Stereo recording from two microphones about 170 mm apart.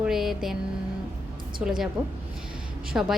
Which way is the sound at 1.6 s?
5° right (ahead or behind).